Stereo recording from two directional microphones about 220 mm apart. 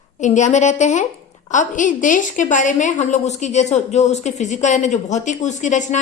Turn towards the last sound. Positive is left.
turn(degrees=35)  # may be behind; listen again after turning